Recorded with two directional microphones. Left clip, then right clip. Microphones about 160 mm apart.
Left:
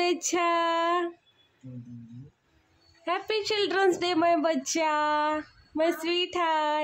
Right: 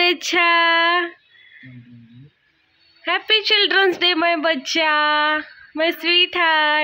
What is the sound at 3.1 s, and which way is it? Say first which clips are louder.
A woman's voice: right 11 dB; 5° left (ahead or behind).